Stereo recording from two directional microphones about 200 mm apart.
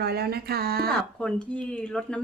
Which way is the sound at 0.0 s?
55° right (ahead or behind).